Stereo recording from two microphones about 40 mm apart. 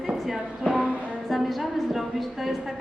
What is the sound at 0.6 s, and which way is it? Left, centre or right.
Music, right.